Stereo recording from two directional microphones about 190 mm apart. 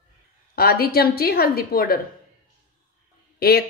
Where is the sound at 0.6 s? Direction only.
50° left (ahead or behind).